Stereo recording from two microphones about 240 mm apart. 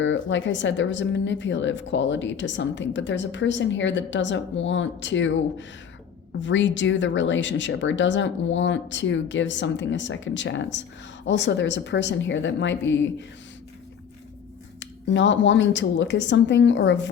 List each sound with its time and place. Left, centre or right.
0.0 s a woman's voice: left
14.8 s a woman's voice: left